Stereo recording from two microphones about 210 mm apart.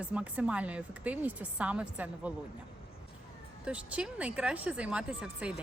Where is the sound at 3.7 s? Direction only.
5° right (ahead or behind).